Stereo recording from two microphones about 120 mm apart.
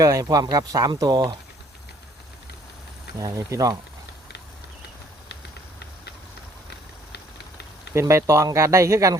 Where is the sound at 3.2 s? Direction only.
30° right (ahead or behind).